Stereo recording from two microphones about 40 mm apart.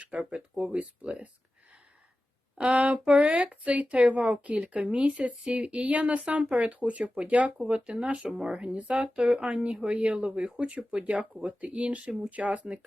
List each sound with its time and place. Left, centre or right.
0.2 s speech: right
2.6 s speech: right